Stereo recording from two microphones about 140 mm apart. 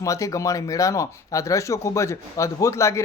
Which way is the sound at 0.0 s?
25° left (ahead or behind).